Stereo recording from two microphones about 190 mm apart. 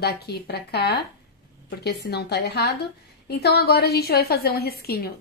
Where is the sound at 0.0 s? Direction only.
55° left (ahead or behind).